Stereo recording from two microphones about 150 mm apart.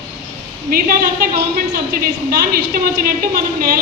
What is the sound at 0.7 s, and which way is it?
A woman's voice, 85° right.